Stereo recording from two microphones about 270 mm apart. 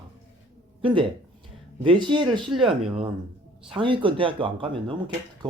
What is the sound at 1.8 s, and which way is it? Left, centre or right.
Speech, centre.